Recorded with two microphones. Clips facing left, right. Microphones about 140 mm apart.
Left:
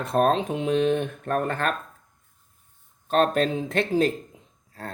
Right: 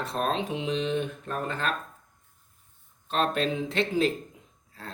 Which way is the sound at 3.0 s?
45° left (ahead or behind).